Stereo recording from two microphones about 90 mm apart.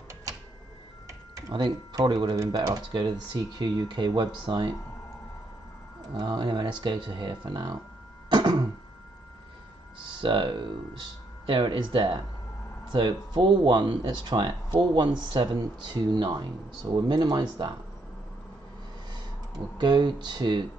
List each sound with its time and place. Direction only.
0.1 s printer: 40° right (ahead or behind)
2.1 s speech: 40° right (ahead or behind)
2.9 s speech: 55° right (ahead or behind)
6.1 s speech: 55° right (ahead or behind)
8.3 s cough: 55° right (ahead or behind)
10.0 s speech: 60° right (ahead or behind)
12.9 s speech: 60° right (ahead or behind)
19.8 s speech: 55° right (ahead or behind)